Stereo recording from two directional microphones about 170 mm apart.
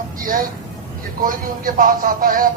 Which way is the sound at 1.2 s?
55° right (ahead or behind).